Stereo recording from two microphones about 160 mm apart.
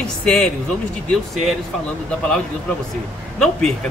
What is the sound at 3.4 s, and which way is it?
Speech, 5° left (ahead or behind).